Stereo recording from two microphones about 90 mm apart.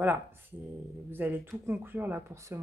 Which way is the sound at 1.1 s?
20° right (ahead or behind).